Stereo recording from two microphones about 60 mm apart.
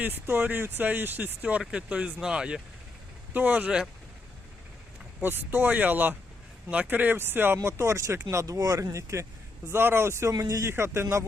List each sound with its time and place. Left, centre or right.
0.0 s speech: right; by 2.6 s centre
3.3 s speech: right
5.2 s speech: right
8.4 s speech: right
9.6 s a man's voice: right
10.3 s speech: right
10.7 s a man's voice: right